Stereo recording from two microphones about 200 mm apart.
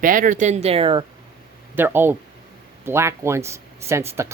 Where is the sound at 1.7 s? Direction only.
10° right (ahead or behind).